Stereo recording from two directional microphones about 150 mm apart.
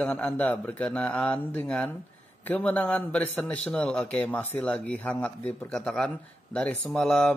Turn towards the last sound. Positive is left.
turn(degrees=0)  # may be behind; listen again after turning